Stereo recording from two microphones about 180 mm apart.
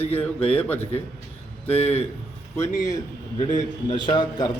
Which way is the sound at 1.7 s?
35° left (ahead or behind).